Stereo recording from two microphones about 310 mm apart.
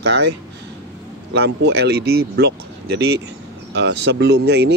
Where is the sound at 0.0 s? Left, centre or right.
Right.